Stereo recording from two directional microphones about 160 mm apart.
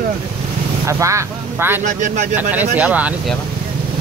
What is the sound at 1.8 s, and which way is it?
Speech, 55° right (ahead or behind).